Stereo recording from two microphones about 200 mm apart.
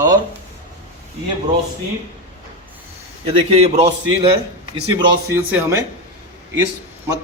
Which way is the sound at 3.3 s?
30° right (ahead or behind).